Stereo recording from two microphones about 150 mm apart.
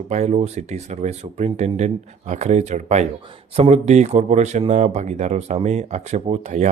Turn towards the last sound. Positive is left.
turn(degrees=-50)  # may be behind; listen again after turning